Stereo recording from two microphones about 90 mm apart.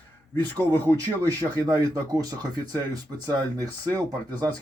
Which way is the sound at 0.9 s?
45° right (ahead or behind).